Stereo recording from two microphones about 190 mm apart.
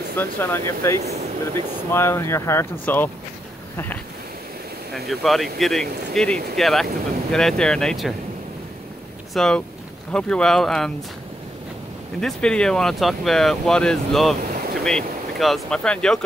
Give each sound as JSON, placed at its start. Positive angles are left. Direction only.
{"t": 0.2, "sound": "speech", "side_deg": 10}
{"t": 1.0, "sound": "speech", "side_deg": -35}
{"t": 1.9, "sound": "speech", "side_deg": 15}
{"t": 4.9, "sound": "speech", "side_deg": 0}
{"t": 9.3, "sound": "speech", "side_deg": 5}
{"t": 12.2, "sound": "speech", "side_deg": 5}